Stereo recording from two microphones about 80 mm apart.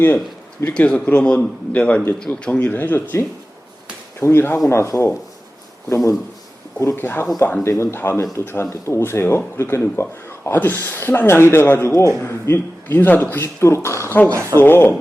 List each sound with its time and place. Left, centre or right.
0.6 s speech: centre; by 5.1 s left
6.7 s speech: left
13.3 s speech: left
14.3 s speech: right
14.6 s speech: left